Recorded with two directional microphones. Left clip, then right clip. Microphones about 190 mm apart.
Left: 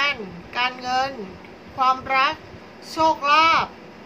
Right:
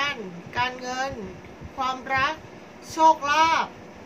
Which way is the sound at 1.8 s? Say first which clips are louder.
Left 6 dB; 15° left (ahead or behind).